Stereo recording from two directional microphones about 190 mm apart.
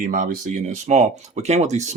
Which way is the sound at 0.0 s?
45° right (ahead or behind).